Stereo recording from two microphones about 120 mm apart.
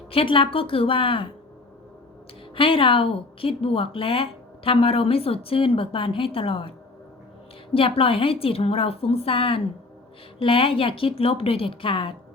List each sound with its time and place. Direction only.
0.1 s speech: 50° left (ahead or behind)
2.6 s speech: 50° left (ahead or behind)